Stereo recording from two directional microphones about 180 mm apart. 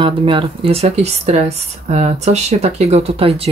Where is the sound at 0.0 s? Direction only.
30° right (ahead or behind).